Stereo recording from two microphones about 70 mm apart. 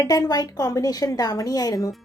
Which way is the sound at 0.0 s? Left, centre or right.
Left.